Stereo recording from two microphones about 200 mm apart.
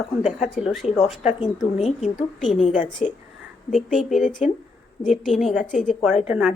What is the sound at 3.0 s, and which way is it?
Speech, 35° left (ahead or behind).